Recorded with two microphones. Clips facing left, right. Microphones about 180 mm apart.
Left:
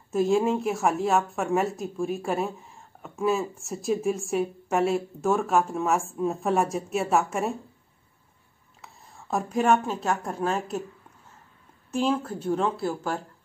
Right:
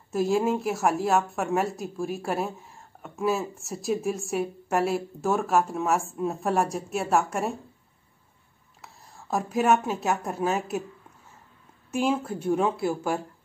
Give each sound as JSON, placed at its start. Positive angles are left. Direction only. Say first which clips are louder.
{"t": 0.1, "sound": "speech", "louder": "left 1 dB", "side_deg": 0}
{"t": 8.8, "sound": "a woman's voice", "louder": "even", "side_deg": 0}
{"t": 11.9, "sound": "a woman's voice", "louder": "even", "side_deg": -10}